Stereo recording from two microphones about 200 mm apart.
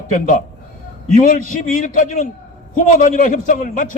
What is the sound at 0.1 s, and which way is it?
A man's voice, 40° left (ahead or behind).